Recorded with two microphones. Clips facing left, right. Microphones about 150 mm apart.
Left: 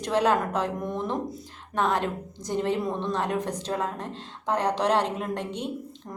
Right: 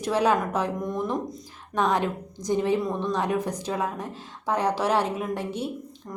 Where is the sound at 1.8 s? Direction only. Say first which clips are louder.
Right 1 dB; 15° right (ahead or behind).